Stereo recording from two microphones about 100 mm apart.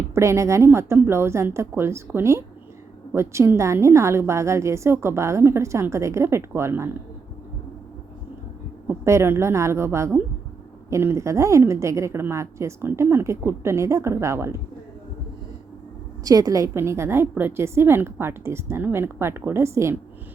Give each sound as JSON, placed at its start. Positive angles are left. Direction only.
{"t": 0.1, "sound": "a woman's voice", "side_deg": -30}
{"t": 9.0, "sound": "a woman's voice", "side_deg": -25}
{"t": 16.2, "sound": "a woman's voice", "side_deg": -35}